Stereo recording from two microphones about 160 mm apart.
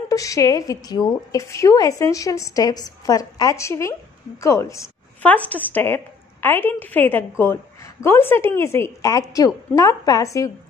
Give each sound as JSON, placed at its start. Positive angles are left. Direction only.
{"t": 0.1, "sound": "a woman's voice", "side_deg": 20}